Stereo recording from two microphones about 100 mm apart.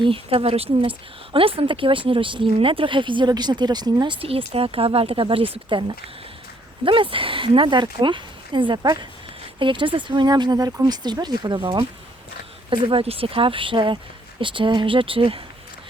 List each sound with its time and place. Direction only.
0.0 s speech: 65° right (ahead or behind); by 3.9 s 45° right (ahead or behind)
4.0 s speech: 60° right (ahead or behind)
6.8 s speech: 60° right (ahead or behind)
9.6 s speech: 55° right (ahead or behind)
10.2 s speech: 45° right (ahead or behind)
12.7 s speech: 65° right (ahead or behind)